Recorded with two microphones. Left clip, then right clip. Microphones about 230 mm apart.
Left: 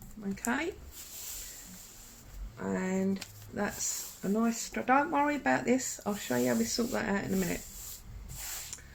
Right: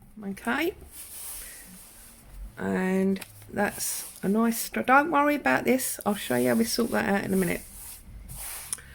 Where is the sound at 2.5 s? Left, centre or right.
Right.